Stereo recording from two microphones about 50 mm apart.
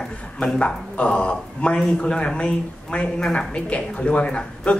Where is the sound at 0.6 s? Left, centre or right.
Left.